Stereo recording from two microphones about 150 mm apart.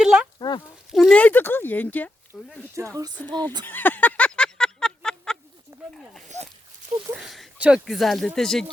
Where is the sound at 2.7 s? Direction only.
20° right (ahead or behind).